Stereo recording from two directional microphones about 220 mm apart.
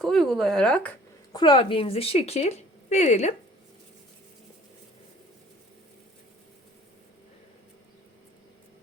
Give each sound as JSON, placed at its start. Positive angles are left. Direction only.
{"t": 0.0, "sound": "speech", "side_deg": 0}
{"t": 1.3, "sound": "speech", "side_deg": 20}